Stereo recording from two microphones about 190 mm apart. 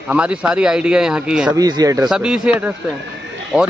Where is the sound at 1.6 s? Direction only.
20° right (ahead or behind).